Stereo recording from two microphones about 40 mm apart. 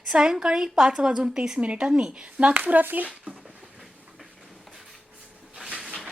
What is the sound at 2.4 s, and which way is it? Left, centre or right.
Speech, right.